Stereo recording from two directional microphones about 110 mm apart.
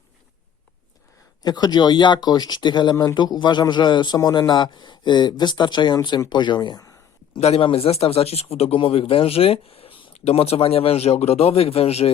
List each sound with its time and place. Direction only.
1.4 s speech: 40° left (ahead or behind)
2.9 s speech: 30° left (ahead or behind)
3.2 s a man's voice: 40° left (ahead or behind)
7.3 s speech: 65° left (ahead or behind)
10.2 s speech: 70° left (ahead or behind)